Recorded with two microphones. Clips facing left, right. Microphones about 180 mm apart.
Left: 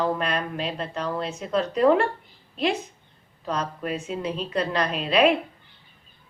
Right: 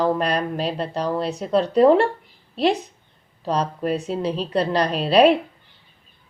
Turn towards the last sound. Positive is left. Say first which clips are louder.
# right 5 dB
turn(degrees=-35)  # may be behind; listen again after turning